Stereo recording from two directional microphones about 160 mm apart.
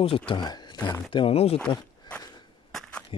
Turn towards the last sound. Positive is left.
turn(degrees=35)  # may be behind; listen again after turning